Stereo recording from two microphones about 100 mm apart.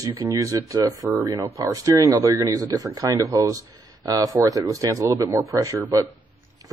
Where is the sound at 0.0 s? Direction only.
35° right (ahead or behind).